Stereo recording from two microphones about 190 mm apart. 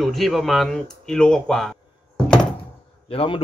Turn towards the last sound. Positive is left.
turn(degrees=30)  # may be behind; listen again after turning